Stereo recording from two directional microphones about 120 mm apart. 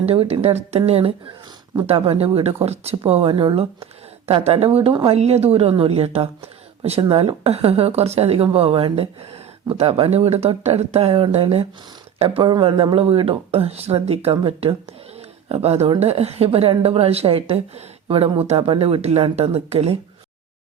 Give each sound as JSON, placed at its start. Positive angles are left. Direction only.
{"t": 0.0, "sound": "a woman's voice", "side_deg": -55}
{"t": 0.8, "sound": "a woman's voice", "side_deg": -50}
{"t": 12.4, "sound": "a woman's voice", "side_deg": -40}